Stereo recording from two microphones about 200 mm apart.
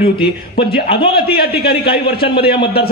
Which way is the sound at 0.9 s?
50° left (ahead or behind).